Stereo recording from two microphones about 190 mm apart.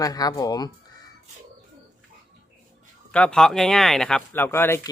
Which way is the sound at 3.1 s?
5° left (ahead or behind).